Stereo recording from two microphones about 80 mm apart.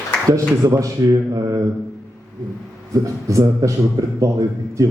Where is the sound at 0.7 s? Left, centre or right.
Right.